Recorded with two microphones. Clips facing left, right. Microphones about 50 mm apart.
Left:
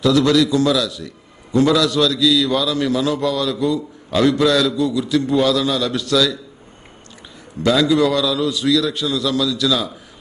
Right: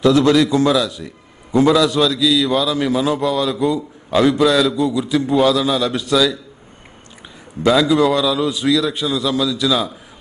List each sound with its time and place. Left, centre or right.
0.0 s a man's voice: right
7.6 s a man's voice: centre